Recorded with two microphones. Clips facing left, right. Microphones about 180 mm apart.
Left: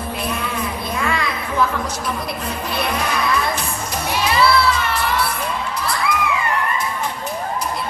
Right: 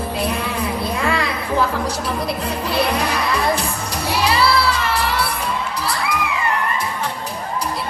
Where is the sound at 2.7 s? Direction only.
35° right (ahead or behind).